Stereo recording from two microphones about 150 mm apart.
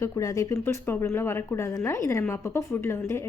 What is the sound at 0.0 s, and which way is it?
A woman's voice, 25° left (ahead or behind).